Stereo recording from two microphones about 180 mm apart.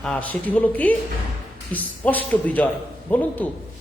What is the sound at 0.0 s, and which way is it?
Speech, 5° left (ahead or behind).